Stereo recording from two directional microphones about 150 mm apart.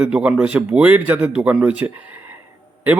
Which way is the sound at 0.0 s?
5° right (ahead or behind).